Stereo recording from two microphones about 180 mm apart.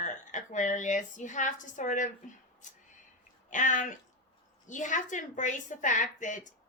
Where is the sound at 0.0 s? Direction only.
45° left (ahead or behind).